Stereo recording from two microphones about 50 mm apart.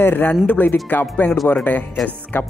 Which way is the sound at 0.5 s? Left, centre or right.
Left.